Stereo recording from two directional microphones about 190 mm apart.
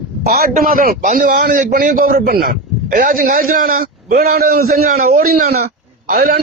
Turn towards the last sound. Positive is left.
turn(degrees=-50)  # may be behind; listen again after turning